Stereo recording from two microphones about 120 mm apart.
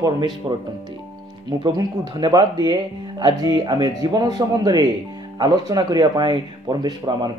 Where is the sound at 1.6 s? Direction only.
35° right (ahead or behind).